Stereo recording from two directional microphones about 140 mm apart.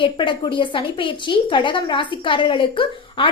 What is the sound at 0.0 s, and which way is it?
A woman's voice, 35° left (ahead or behind).